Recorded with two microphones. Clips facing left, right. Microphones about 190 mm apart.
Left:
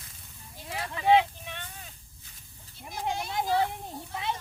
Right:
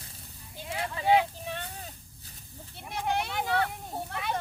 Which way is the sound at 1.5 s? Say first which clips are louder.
Right 5 dB; 35° right (ahead or behind).